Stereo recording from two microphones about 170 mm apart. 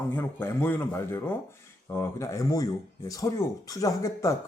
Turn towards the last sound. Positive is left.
turn(degrees=20)  # may be behind; listen again after turning